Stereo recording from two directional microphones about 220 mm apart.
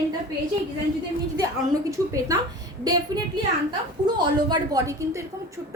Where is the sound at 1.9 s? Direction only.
15° right (ahead or behind).